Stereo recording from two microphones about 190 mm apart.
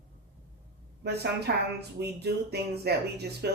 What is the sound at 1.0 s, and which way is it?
Speech, 60° right (ahead or behind).